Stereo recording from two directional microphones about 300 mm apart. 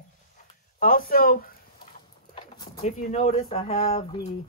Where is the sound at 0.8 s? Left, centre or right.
Left.